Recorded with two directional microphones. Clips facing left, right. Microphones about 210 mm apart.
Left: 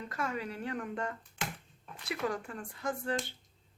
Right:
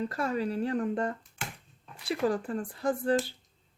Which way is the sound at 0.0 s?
35° right (ahead or behind).